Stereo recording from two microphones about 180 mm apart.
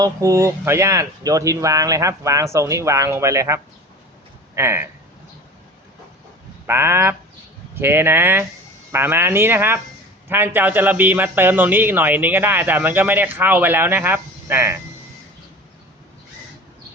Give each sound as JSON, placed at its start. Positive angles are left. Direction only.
{"t": 0.0, "sound": "a man's voice", "side_deg": -20}
{"t": 6.7, "sound": "a man's voice", "side_deg": -15}